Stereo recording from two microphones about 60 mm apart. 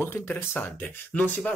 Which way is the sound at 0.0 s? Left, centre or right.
Left.